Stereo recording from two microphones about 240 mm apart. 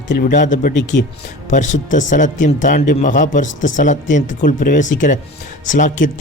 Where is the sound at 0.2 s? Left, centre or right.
Left.